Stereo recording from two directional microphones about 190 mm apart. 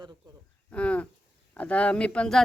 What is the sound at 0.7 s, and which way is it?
Speech, 5° left (ahead or behind).